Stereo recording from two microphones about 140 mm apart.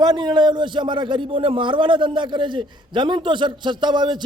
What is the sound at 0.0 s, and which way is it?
A man's voice, 30° right (ahead or behind).